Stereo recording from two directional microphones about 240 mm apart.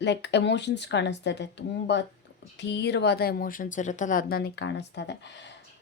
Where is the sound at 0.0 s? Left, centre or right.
Left.